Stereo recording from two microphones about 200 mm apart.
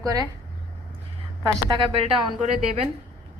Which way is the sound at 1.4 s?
25° right (ahead or behind).